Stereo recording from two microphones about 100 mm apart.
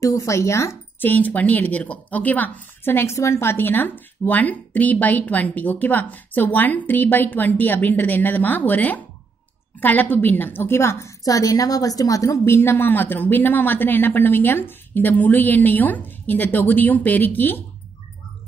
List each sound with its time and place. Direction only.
0.0 s speech: 35° left (ahead or behind)
1.0 s a woman's voice: 15° left (ahead or behind)